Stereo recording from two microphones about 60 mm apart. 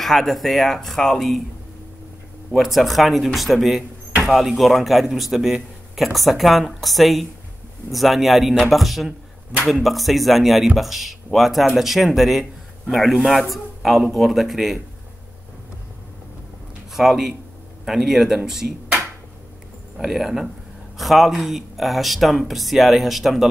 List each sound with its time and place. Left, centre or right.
0.0 s a man's voice: centre
2.5 s a man's voice: centre
16.9 s a man's voice: centre
20.0 s a man's voice: centre